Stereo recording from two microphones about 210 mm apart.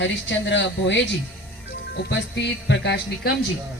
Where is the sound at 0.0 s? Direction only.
60° left (ahead or behind).